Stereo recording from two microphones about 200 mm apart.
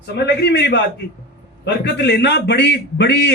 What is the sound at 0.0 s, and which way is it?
A man's voice, 55° left (ahead or behind).